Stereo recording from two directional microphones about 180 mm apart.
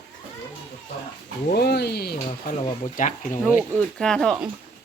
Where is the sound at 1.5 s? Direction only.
60° left (ahead or behind).